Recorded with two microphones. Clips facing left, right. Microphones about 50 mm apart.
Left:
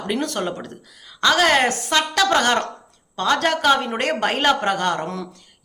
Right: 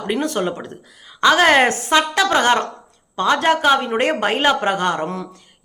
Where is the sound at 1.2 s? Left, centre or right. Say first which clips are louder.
Right 4 dB; right.